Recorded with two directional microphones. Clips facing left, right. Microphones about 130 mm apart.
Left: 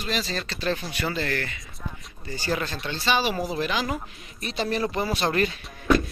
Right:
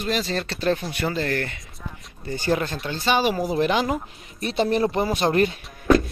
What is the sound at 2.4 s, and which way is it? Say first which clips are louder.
Speech: right 4 dB; 20° right (ahead or behind).